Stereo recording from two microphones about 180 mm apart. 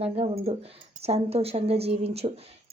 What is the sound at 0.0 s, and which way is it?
Speech, 35° right (ahead or behind).